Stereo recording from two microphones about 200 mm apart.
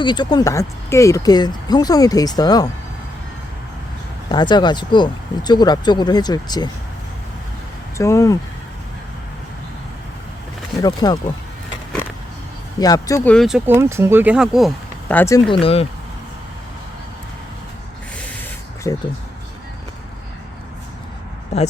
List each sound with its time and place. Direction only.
0.0 s speech: 20° left (ahead or behind)
4.3 s speech: 20° left (ahead or behind)
7.9 s speech: 15° left (ahead or behind)
10.8 s speech: 20° left (ahead or behind)
12.8 s speech: 15° left (ahead or behind)
13.3 s speech: centre (ahead or behind)
13.7 s speech: 10° right (ahead or behind)
15.1 s speech: 10° left (ahead or behind)
15.6 s speech: 30° left (ahead or behind)
18.8 s speech: 15° left (ahead or behind)